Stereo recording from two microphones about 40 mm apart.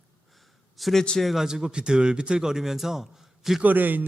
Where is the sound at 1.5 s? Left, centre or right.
Centre.